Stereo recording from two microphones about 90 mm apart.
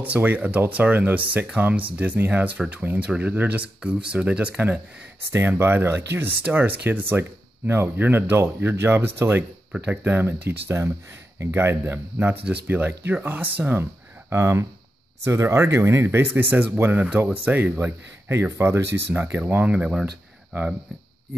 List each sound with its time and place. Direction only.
0.0 s speech: 20° right (ahead or behind)
5.3 s speech: 25° right (ahead or behind); by 20.1 s 10° right (ahead or behind)